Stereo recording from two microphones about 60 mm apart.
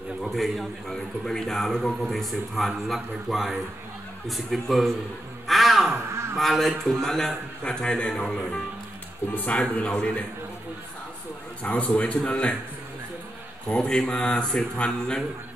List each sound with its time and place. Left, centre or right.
0.2 s a man's voice: centre
5.5 s crow: centre
6.3 s a man's voice: centre
9.3 s speech: left
9.6 s a man's voice: centre
11.6 s a man's voice: left
13.7 s a man's voice: centre